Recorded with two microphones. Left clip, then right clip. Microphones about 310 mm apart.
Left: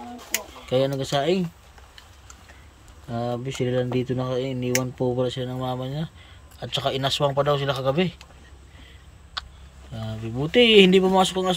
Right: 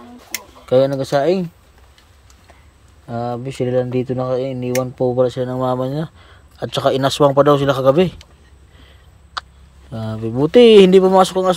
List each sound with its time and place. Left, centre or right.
0.7 s speech: centre
3.1 s speech: centre
9.9 s speech: centre